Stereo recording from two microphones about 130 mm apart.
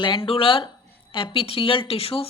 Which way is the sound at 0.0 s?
40° left (ahead or behind).